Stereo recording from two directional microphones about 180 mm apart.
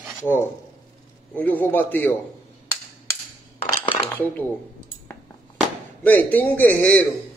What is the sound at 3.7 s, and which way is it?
Dishes, 30° left (ahead or behind).